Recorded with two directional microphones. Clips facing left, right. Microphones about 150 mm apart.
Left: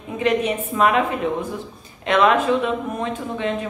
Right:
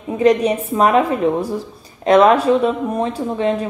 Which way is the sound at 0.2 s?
40° right (ahead or behind).